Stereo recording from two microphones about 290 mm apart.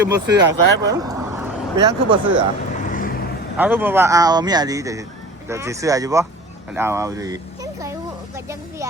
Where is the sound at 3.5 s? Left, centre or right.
Centre.